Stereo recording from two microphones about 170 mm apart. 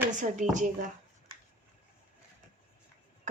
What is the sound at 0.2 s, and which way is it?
Speech, 50° right (ahead or behind).